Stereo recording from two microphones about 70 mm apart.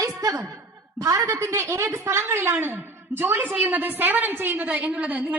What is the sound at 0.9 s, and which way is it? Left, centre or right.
A woman's voice, right.